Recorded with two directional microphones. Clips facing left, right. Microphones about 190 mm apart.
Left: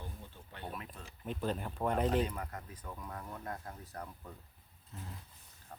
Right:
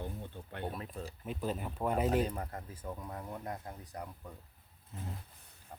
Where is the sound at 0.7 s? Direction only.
35° right (ahead or behind).